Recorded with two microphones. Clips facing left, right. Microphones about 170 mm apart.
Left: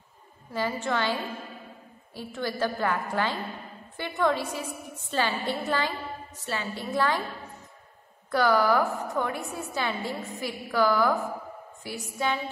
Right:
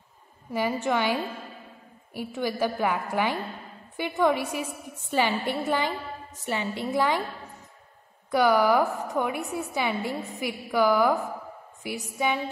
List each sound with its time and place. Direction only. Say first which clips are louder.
0.5 s a woman's voice: right 3 dB; 15° right (ahead or behind)
8.3 s a woman's voice: right 2 dB; 15° right (ahead or behind)